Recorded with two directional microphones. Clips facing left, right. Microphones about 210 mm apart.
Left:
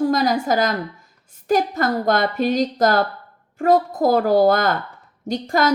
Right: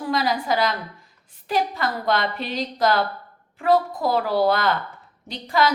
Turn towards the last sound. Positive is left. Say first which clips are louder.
# left 3 dB
turn(degrees=45)  # may be behind; listen again after turning